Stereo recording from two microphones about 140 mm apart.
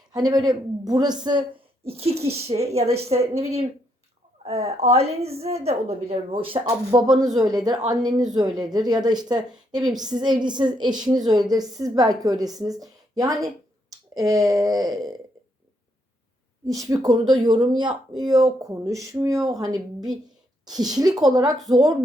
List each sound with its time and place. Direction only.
0.1 s speech: 30° right (ahead or behind); by 6.4 s 45° right (ahead or behind)
6.7 s a woman's voice: 30° right (ahead or behind)
16.6 s a woman's voice: 25° right (ahead or behind)